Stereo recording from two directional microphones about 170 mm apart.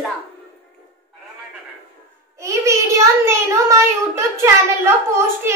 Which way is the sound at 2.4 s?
15° right (ahead or behind).